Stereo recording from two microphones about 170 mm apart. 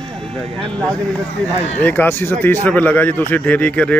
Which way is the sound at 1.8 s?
10° left (ahead or behind).